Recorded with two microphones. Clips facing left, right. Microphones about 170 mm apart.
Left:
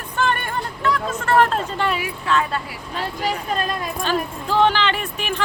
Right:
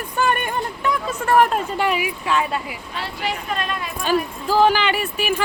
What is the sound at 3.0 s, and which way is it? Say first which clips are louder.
Speech: left 3 dB; 40° left (ahead or behind).